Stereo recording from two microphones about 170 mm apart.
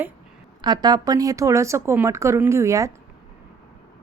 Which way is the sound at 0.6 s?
25° right (ahead or behind).